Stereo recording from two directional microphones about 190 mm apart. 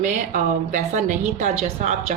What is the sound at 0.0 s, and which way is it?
A woman's voice, 40° right (ahead or behind).